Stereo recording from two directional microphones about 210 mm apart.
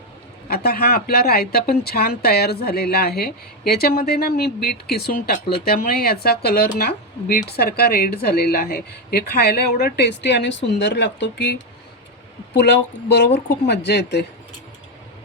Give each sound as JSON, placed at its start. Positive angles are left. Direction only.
{"t": 0.4, "sound": "speech", "side_deg": 45}